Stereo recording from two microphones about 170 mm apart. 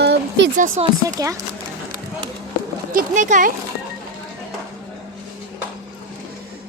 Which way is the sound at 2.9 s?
50° right (ahead or behind).